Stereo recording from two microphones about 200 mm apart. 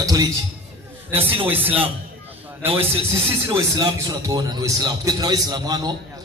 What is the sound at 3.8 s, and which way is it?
A man's voice, 20° right (ahead or behind).